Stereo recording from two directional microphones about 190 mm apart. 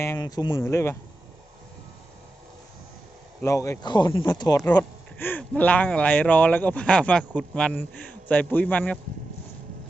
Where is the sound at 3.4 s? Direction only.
15° left (ahead or behind).